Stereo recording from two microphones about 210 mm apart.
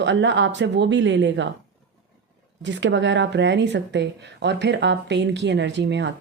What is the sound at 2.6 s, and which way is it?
Speech, 60° right (ahead or behind).